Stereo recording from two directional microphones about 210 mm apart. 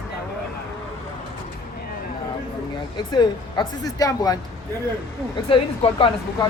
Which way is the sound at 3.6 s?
15° left (ahead or behind).